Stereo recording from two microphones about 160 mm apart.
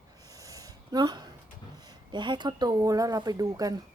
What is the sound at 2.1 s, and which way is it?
Speech, 30° right (ahead or behind).